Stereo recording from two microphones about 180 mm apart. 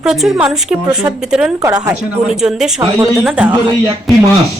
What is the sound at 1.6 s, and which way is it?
Speech, 20° right (ahead or behind).